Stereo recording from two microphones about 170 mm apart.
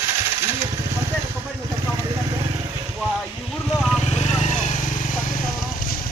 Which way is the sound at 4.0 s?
40° left (ahead or behind).